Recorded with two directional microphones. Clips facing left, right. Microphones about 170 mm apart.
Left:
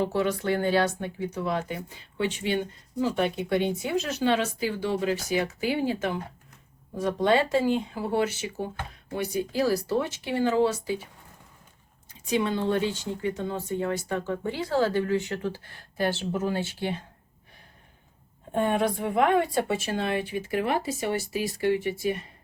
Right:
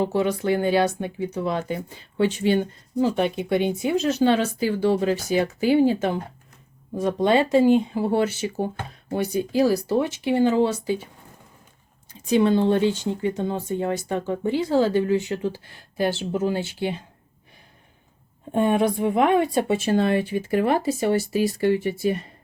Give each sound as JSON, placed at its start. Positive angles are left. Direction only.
{"t": 0.0, "sound": "speech", "side_deg": -15}
{"t": 7.0, "sound": "speech", "side_deg": -20}
{"t": 9.3, "sound": "speech", "side_deg": -20}
{"t": 12.2, "sound": "speech", "side_deg": -30}
{"t": 18.5, "sound": "speech", "side_deg": -15}
{"t": 20.0, "sound": "speech", "side_deg": -40}